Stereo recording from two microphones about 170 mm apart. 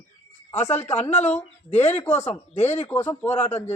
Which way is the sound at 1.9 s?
15° left (ahead or behind).